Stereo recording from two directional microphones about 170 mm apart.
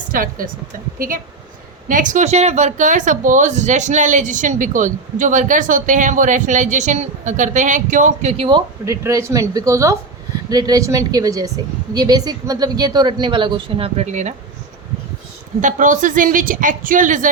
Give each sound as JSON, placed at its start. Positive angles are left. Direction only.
{"t": 0.1, "sound": "speech", "side_deg": -55}
{"t": 8.4, "sound": "a woman's voice", "side_deg": -20}
{"t": 15.6, "sound": "speech", "side_deg": -50}